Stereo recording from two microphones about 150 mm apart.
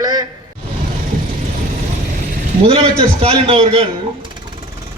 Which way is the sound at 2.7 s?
40° right (ahead or behind).